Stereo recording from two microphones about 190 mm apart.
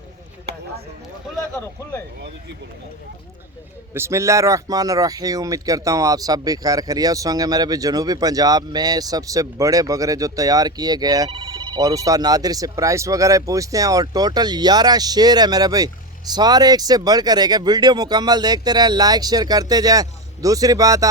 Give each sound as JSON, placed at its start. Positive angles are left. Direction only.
{"t": 3.9, "sound": "a man's voice", "side_deg": -15}